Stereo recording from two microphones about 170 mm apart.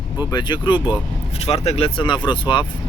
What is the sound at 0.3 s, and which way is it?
Speech, 25° left (ahead or behind).